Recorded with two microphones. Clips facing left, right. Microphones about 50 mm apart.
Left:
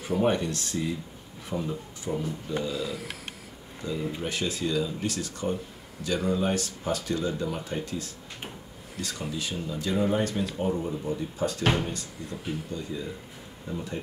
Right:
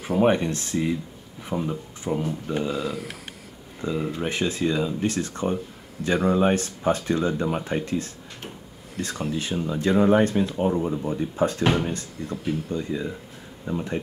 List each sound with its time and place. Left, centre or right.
0.2 s speech: right
2.7 s speech: centre
3.8 s speech: right
9.3 s speech: right